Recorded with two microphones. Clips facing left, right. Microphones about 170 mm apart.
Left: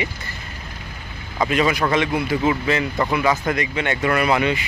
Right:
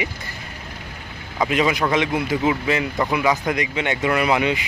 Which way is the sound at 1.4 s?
15° right (ahead or behind).